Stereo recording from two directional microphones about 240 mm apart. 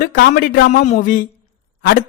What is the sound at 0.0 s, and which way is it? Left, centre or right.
Speech, left.